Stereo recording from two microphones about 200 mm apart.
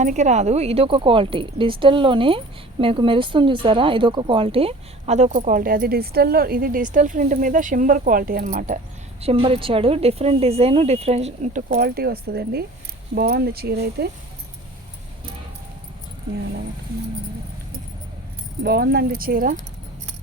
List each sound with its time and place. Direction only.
0.0 s a woman's voice: 35° right (ahead or behind)
9.2 s a woman's voice: 30° right (ahead or behind); by 14.1 s 55° right (ahead or behind)
18.6 s speech: 50° right (ahead or behind)